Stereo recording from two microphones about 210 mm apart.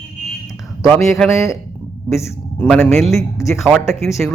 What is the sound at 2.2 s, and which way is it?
A man's voice, 5° left (ahead or behind).